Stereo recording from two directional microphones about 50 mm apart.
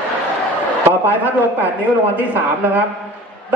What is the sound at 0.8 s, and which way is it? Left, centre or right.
A man's voice, right.